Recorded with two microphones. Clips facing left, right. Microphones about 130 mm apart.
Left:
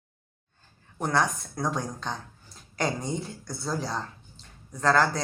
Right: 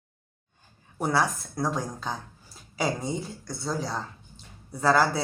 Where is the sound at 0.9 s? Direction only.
5° right (ahead or behind).